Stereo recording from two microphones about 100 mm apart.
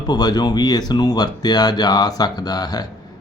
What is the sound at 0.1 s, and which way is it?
Mantra, 45° left (ahead or behind).